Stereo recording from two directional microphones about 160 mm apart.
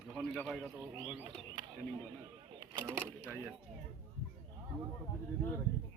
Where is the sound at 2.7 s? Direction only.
15° right (ahead or behind).